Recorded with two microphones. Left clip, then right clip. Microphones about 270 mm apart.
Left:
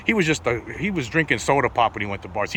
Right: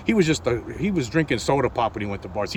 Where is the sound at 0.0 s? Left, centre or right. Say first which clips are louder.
Left 1 dB; centre.